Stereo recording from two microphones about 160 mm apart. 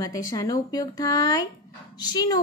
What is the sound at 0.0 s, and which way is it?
A woman's voice, 20° left (ahead or behind).